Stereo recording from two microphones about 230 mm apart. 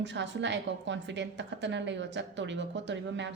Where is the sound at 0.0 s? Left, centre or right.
Right.